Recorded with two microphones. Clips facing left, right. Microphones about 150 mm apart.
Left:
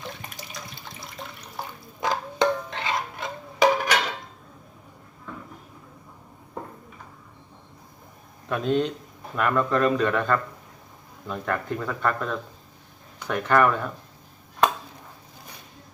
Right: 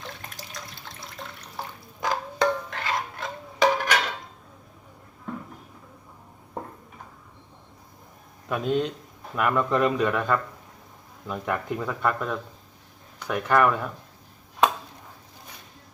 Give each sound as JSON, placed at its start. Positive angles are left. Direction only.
{"t": 0.0, "sound": "water", "side_deg": 0}
{"t": 2.0, "sound": "music", "side_deg": 25}
{"t": 3.2, "sound": "a sound", "side_deg": 0}
{"t": 8.4, "sound": "speech", "side_deg": -5}
{"t": 9.6, "sound": "speech", "side_deg": -20}
{"t": 10.0, "sound": "speech", "side_deg": -5}